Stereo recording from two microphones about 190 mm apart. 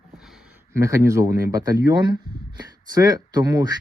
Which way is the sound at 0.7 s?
15° right (ahead or behind).